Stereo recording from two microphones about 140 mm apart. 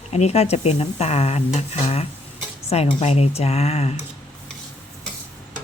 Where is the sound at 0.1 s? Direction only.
50° left (ahead or behind).